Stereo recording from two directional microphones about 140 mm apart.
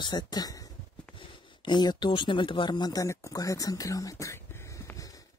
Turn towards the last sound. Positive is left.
turn(degrees=25)  # may be behind; listen again after turning